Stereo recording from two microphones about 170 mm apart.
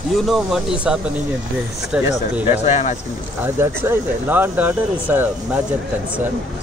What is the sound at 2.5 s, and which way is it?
Speech, 40° left (ahead or behind).